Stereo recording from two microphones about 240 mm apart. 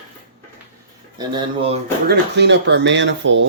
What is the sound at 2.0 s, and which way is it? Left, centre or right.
Speech, right.